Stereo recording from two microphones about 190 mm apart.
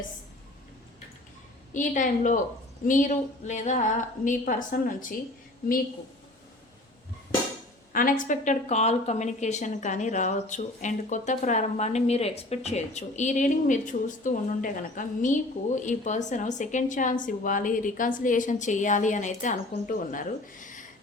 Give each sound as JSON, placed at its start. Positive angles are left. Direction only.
{"t": 1.7, "sound": "a woman's voice", "side_deg": 40}
{"t": 7.9, "sound": "speech", "side_deg": 45}